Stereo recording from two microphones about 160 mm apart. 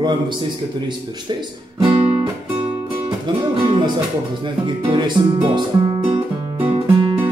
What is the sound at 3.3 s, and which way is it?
Music, 30° right (ahead or behind).